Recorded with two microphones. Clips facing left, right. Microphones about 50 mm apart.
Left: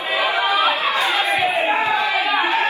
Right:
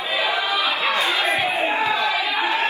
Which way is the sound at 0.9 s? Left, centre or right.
Left.